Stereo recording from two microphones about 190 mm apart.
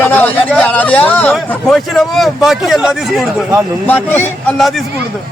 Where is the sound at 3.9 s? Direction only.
10° left (ahead or behind).